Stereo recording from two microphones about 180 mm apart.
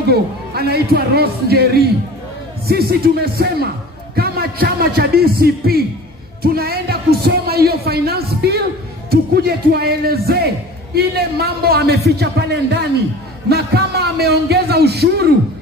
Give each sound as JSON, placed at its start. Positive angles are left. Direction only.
{"t": 0.1, "sound": "speech", "side_deg": -60}